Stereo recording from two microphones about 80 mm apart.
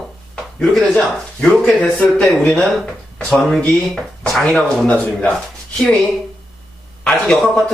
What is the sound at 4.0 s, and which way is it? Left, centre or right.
Speech, centre.